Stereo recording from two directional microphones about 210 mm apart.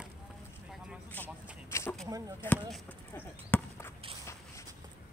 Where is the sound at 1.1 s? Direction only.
10° left (ahead or behind).